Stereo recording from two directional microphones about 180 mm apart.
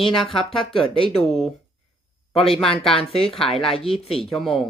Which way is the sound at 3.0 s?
30° left (ahead or behind).